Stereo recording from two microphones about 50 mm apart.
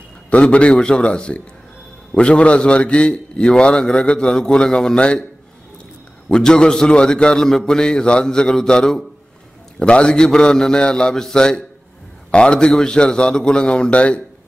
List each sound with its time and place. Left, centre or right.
0.3 s a man's voice: left
6.2 s a man's voice: centre